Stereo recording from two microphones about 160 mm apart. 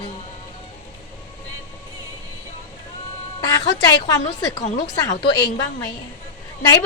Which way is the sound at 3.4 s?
25° left (ahead or behind).